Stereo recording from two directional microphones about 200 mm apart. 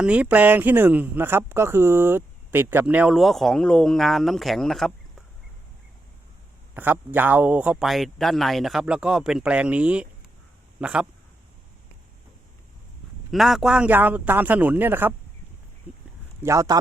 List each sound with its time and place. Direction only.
0.0 s speech: 5° right (ahead or behind)
6.7 s a man's voice: 10° right (ahead or behind)
13.3 s speech: centre (ahead or behind)
16.4 s speech: 15° right (ahead or behind)